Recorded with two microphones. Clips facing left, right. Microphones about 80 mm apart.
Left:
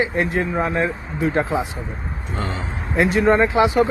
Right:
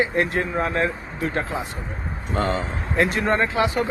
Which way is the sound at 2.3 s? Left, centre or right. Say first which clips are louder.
Right 5 dB; right.